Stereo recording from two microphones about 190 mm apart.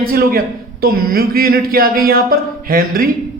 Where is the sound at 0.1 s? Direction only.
50° right (ahead or behind).